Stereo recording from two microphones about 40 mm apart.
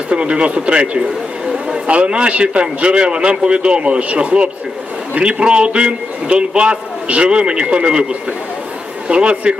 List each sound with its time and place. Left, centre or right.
0.1 s a man's voice: right
9.0 s a man's voice: right